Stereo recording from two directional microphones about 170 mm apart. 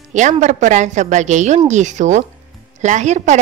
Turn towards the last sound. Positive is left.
turn(degrees=-45)  # may be behind; listen again after turning